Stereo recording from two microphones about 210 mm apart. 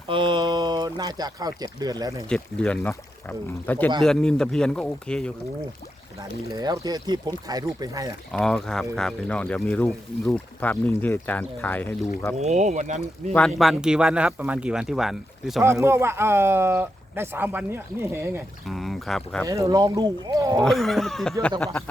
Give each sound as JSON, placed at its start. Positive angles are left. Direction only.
{"t": 0.1, "sound": "speech", "side_deg": -25}
{"t": 2.3, "sound": "speech", "side_deg": 5}
{"t": 6.4, "sound": "speech", "side_deg": -20}
{"t": 8.3, "sound": "speech", "side_deg": 0}
{"t": 12.4, "sound": "speech", "side_deg": -35}
{"t": 13.6, "sound": "speech", "side_deg": 0}
{"t": 15.6, "sound": "speech", "side_deg": -15}
{"t": 18.7, "sound": "speech", "side_deg": 0}
{"t": 19.5, "sound": "speech", "side_deg": -15}
{"t": 20.6, "sound": "speech", "side_deg": 0}